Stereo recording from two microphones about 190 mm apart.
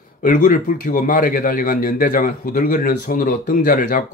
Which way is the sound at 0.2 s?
45° left (ahead or behind).